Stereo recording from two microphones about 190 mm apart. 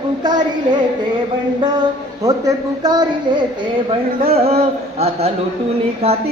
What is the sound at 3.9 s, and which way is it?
Music, 30° right (ahead or behind).